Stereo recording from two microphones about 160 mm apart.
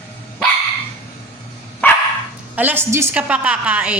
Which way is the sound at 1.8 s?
10° left (ahead or behind).